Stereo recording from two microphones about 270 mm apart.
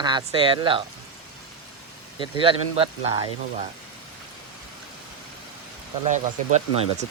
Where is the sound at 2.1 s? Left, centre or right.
Centre.